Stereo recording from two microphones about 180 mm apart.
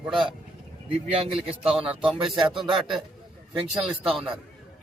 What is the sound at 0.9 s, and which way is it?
Speech, 30° right (ahead or behind).